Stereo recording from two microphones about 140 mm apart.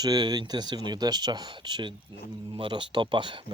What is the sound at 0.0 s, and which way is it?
Speech, 30° right (ahead or behind).